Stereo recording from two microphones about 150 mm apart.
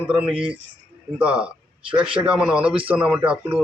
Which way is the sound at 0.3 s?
5° right (ahead or behind).